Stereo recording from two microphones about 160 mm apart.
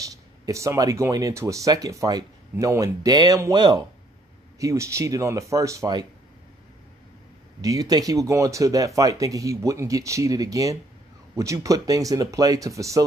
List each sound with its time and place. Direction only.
0.1 s speech: 20° right (ahead or behind)
7.6 s speech: 25° right (ahead or behind)